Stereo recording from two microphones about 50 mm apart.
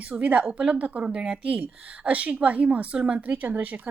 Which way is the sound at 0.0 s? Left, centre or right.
Right.